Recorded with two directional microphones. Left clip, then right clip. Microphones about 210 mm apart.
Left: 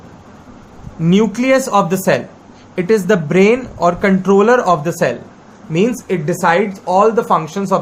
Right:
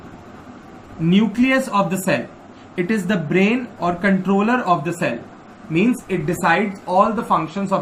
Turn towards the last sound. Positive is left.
turn(degrees=55)  # may be behind; listen again after turning